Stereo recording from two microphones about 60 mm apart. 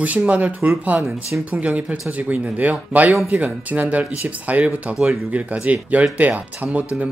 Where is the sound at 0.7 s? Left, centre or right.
Right.